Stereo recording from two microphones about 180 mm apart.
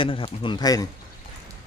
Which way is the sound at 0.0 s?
30° left (ahead or behind).